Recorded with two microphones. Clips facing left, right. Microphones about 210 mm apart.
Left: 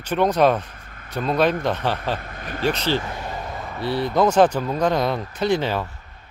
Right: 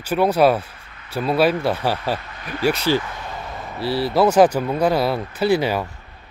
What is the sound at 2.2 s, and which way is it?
Speech, 50° left (ahead or behind).